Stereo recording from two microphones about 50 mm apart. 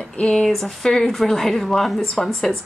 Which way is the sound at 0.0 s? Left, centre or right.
Centre.